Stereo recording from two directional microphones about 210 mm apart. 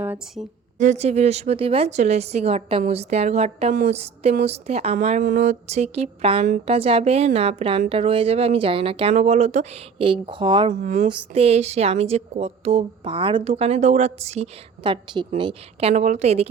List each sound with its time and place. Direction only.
0.0 s a woman's voice: 10° right (ahead or behind)
0.8 s a woman's voice: 35° right (ahead or behind)
10.7 s a woman's voice: 35° right (ahead or behind)